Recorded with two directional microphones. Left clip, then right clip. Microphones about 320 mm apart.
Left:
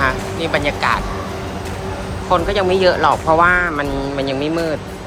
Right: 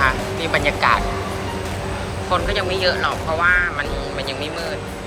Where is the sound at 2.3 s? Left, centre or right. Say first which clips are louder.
Left 5 dB; centre.